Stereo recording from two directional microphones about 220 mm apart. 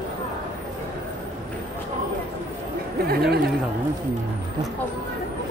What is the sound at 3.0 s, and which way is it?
Speech, 45° right (ahead or behind).